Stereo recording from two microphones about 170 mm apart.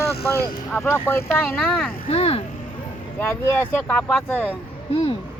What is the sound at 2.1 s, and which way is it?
Music, 35° left (ahead or behind).